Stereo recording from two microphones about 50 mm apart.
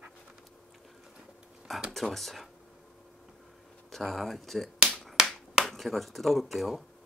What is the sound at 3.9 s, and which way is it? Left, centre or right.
Speech, centre.